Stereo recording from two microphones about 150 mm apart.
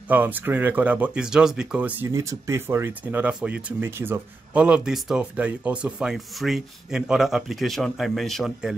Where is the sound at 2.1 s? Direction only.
20° right (ahead or behind).